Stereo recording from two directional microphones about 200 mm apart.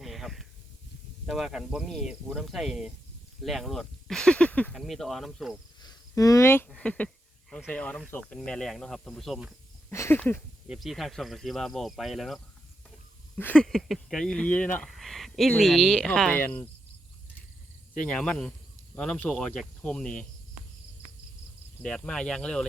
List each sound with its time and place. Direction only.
0.0 s snake: centre (ahead or behind)
1.3 s speech: centre (ahead or behind)
5.8 s a sound: 20° left (ahead or behind)
6.7 s speech: 5° left (ahead or behind)
9.9 s a sound: 10° left (ahead or behind)
10.7 s speech: centre (ahead or behind)
17.9 s speech: 5° left (ahead or behind)
21.8 s speech: 5° left (ahead or behind)